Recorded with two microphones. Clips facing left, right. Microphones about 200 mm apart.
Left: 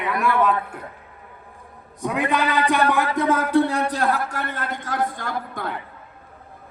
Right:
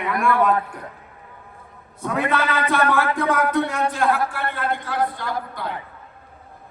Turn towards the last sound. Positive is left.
turn(degrees=45)  # may be behind; listen again after turning